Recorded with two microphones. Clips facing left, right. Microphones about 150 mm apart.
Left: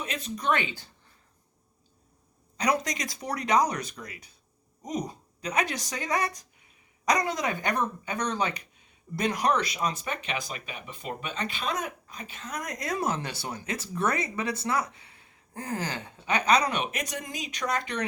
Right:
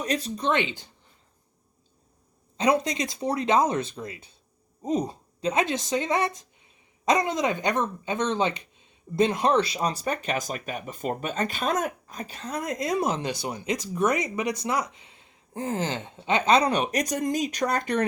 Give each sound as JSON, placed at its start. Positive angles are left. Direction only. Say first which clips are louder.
{"t": 0.0, "sound": "speech", "louder": "right 4 dB", "side_deg": -35}
{"t": 2.6, "sound": "speech", "louder": "right 4 dB", "side_deg": -25}